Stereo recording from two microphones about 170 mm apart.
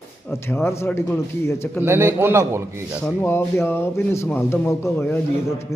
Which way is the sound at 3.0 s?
5° left (ahead or behind).